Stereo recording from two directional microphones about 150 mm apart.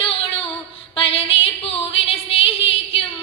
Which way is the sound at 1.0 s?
40° left (ahead or behind).